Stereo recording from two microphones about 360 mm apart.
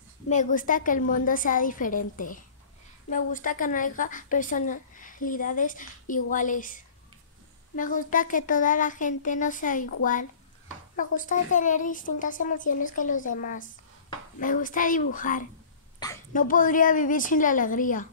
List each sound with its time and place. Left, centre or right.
0.3 s a woman's voice: left
11.0 s a woman's voice: left